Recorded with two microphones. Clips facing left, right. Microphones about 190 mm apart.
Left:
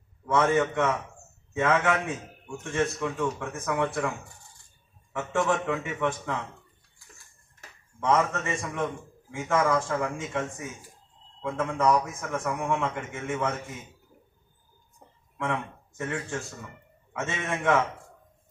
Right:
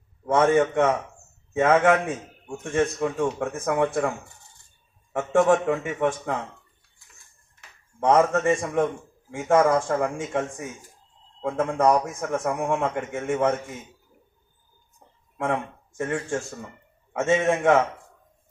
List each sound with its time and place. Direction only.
0.3 s a man's voice: 45° right (ahead or behind)
5.1 s a man's voice: 50° right (ahead or behind)
8.0 s a man's voice: 50° right (ahead or behind)
15.3 s a man's voice: 50° right (ahead or behind)